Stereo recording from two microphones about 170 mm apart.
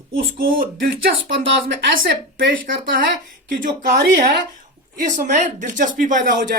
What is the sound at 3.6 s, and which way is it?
Speech, 60° right (ahead or behind).